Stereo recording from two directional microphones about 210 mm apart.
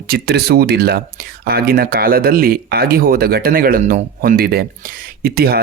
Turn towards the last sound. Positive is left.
turn(degrees=-45)  # may be behind; listen again after turning